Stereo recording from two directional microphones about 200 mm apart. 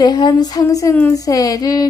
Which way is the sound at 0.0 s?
20° left (ahead or behind).